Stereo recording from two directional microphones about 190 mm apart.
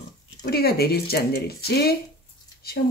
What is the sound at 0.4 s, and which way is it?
Speech, 55° left (ahead or behind).